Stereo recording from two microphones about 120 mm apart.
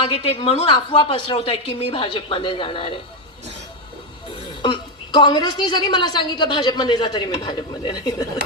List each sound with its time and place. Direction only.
0.0 s a woman's voice: 50° left (ahead or behind)
4.6 s a woman's voice: 40° left (ahead or behind)